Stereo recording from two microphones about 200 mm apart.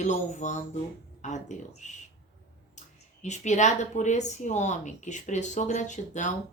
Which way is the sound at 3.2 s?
35° left (ahead or behind).